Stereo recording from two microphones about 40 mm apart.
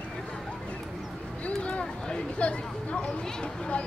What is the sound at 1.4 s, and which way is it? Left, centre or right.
Speech, left.